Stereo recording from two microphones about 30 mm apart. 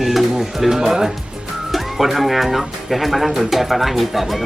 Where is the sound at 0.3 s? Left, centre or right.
Centre.